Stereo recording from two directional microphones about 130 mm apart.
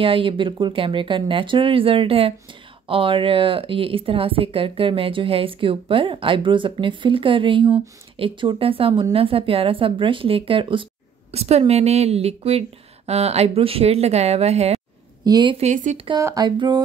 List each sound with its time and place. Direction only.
0.0 s speech: 40° right (ahead or behind)
11.3 s speech: 55° right (ahead or behind)
15.2 s speech: 30° right (ahead or behind)
15.6 s speech: 70° right (ahead or behind)
16.2 s speech: 30° right (ahead or behind)